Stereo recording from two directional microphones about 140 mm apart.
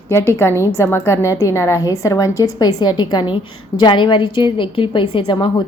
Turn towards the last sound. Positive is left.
turn(degrees=35)  # may be behind; listen again after turning